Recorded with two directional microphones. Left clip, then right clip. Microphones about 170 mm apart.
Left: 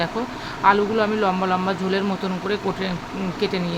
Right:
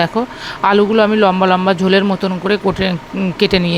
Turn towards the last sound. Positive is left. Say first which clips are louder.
# right 10 dB
turn(degrees=-50)  # may be behind; listen again after turning